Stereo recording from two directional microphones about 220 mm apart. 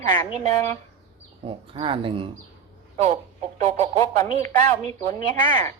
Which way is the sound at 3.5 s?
30° right (ahead or behind).